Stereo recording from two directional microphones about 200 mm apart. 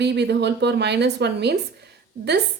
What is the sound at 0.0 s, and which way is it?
Speech, 55° right (ahead or behind).